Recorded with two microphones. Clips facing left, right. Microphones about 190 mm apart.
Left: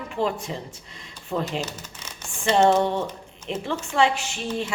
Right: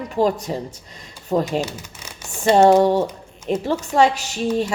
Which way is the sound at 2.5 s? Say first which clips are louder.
Right 6 dB; 40° right (ahead or behind).